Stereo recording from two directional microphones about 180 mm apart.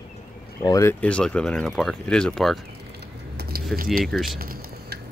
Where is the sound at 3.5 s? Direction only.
60° right (ahead or behind).